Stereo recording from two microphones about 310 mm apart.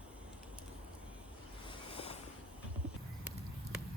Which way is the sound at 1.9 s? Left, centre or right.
Centre.